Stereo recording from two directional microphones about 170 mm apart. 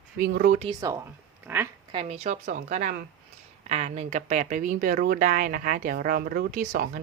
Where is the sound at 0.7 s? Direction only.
20° right (ahead or behind).